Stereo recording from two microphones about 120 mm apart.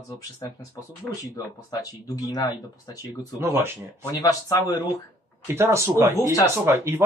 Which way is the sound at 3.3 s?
20° right (ahead or behind).